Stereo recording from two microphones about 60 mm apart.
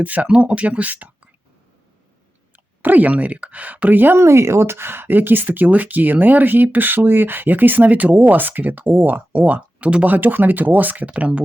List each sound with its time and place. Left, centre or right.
0.0 s speech: right
2.8 s speech: right
4.2 s speech: right